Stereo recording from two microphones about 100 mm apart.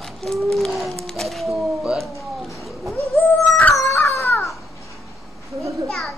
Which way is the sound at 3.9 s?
30° left (ahead or behind).